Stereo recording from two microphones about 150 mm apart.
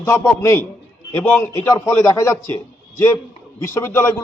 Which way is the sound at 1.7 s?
20° left (ahead or behind).